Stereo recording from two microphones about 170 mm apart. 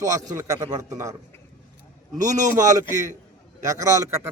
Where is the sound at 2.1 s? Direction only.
45° right (ahead or behind).